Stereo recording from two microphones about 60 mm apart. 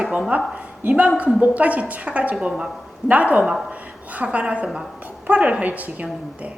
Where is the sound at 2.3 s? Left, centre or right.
Centre.